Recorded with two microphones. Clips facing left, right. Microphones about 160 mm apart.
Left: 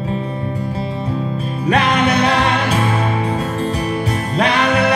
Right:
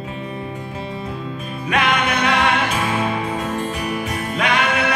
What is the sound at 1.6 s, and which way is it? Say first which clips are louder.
Music: left 4 dB; 35° left (ahead or behind).